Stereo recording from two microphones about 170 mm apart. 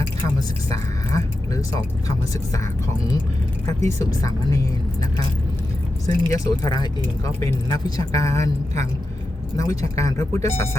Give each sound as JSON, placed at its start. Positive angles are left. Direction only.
{"t": 0.3, "sound": "speech", "side_deg": 20}
{"t": 3.7, "sound": "speech", "side_deg": 15}
{"t": 6.1, "sound": "speech", "side_deg": 20}